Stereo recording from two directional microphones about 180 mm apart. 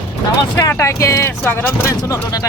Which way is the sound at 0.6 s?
15° left (ahead or behind).